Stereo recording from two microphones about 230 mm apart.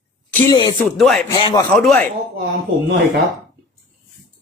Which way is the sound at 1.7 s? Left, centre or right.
Centre.